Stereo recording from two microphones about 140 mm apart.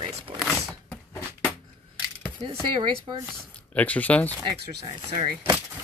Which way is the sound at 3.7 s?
10° left (ahead or behind).